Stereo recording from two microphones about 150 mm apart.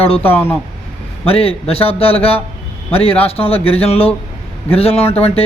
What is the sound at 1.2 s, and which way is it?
A man's voice, 40° left (ahead or behind).